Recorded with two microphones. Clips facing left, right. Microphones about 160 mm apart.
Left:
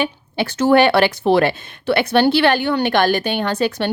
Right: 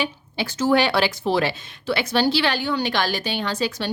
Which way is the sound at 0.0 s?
60° left (ahead or behind).